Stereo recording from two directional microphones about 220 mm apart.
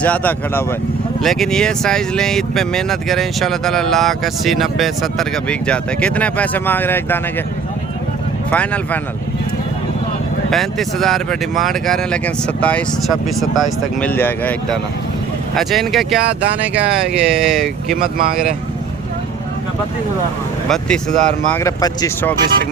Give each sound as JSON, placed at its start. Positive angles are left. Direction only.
{"t": 0.0, "sound": "speech", "side_deg": 5}
{"t": 8.4, "sound": "speech", "side_deg": 5}
{"t": 10.5, "sound": "speech", "side_deg": 0}
{"t": 18.0, "sound": "speech", "side_deg": -45}
{"t": 20.7, "sound": "speech", "side_deg": 5}
{"t": 21.5, "sound": "speech", "side_deg": 15}